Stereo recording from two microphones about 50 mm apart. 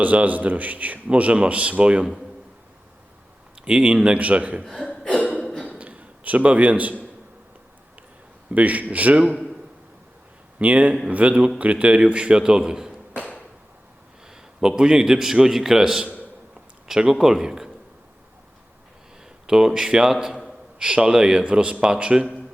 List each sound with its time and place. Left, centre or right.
0.0 s a man's voice: right
3.6 s a man's voice: centre
4.8 s a sound: left
5.4 s a sound: centre
5.7 s a sound: right
8.4 s a man's voice: right
10.6 s a man's voice: right; by 13.2 s centre
14.3 s a man's voice: centre
19.5 s a man's voice: centre